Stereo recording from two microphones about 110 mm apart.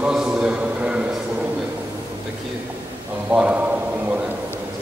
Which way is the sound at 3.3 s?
10° right (ahead or behind).